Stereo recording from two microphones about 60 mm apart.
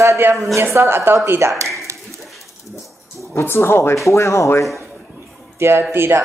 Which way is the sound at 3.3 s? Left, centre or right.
Left.